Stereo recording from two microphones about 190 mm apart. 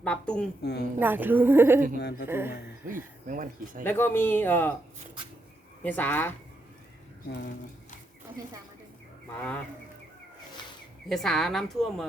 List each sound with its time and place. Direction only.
0.0 s a woman's voice: 5° left (ahead or behind)
0.6 s a woman's voice: 60° left (ahead or behind)
0.9 s a woman's voice: 10° right (ahead or behind)
2.0 s a woman's voice: 60° left (ahead or behind)
2.2 s a woman's voice: 10° right (ahead or behind)
3.2 s speech: 45° right (ahead or behind)
3.8 s speech: 10° left (ahead or behind)
5.8 s speech: 10° left (ahead or behind)
9.3 s speech: 5° left (ahead or behind)
11.1 s a woman's voice: centre (ahead or behind)